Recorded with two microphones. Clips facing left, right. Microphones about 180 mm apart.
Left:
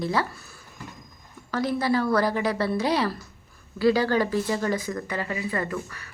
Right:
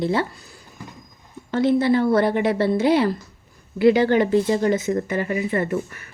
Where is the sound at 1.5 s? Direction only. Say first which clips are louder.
Right 6 dB; 25° right (ahead or behind).